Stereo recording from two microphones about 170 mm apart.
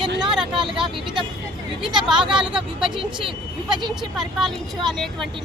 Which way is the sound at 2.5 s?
30° right (ahead or behind).